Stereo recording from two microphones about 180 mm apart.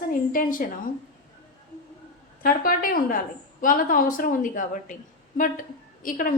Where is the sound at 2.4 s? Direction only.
50° left (ahead or behind).